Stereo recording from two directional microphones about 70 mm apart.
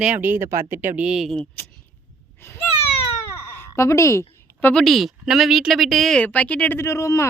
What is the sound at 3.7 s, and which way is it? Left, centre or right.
Speech, left.